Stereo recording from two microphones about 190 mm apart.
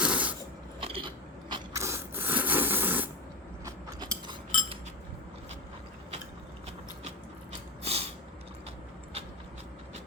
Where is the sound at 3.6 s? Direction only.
25° right (ahead or behind).